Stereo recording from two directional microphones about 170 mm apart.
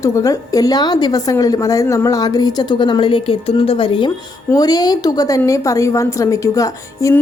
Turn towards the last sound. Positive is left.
turn(degrees=20)  # may be behind; listen again after turning